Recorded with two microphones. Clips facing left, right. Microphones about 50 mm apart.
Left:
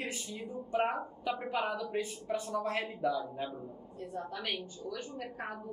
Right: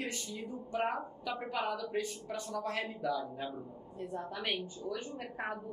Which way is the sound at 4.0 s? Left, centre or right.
Centre.